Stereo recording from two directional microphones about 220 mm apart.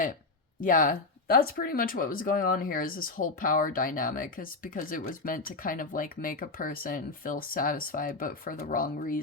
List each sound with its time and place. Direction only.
0.6 s speech: 40° left (ahead or behind)